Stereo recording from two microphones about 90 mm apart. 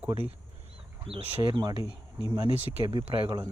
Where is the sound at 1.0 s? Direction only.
75° right (ahead or behind).